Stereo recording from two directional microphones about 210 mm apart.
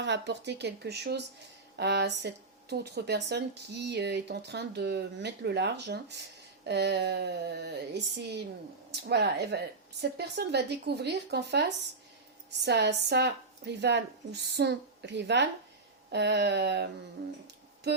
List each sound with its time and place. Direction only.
0.0 s speech: 55° right (ahead or behind)